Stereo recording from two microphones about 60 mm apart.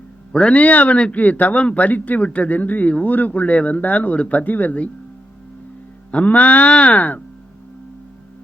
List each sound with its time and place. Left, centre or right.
0.3 s a man's voice: left
6.1 s a man's voice: left